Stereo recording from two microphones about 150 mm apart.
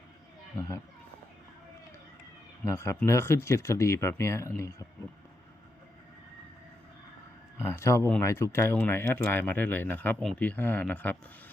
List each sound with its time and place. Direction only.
2.6 s speech: 15° left (ahead or behind)
7.6 s speech: 20° left (ahead or behind)